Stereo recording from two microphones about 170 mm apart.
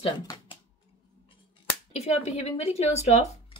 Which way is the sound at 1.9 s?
40° left (ahead or behind).